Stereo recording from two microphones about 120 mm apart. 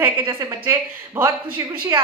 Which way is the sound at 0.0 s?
20° right (ahead or behind).